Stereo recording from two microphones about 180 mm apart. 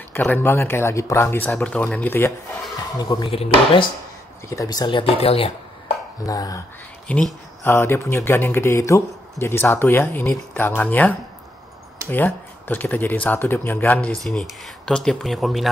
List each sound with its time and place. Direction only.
0.1 s speech: 10° left (ahead or behind)
3.0 s speech: 25° left (ahead or behind)
4.5 s speech: 20° left (ahead or behind)
6.2 s speech: 20° left (ahead or behind)
7.1 s speech: 5° left (ahead or behind)